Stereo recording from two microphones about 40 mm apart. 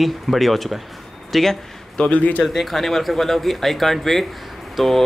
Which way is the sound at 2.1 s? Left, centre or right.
Left.